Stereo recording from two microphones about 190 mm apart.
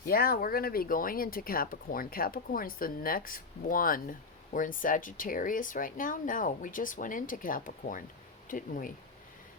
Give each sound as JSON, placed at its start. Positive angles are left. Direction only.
{"t": 0.0, "sound": "speech", "side_deg": 50}